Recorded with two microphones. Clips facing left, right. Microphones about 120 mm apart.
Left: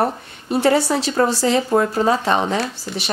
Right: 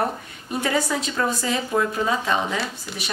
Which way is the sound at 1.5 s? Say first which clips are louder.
Left 6 dB; 40° left (ahead or behind).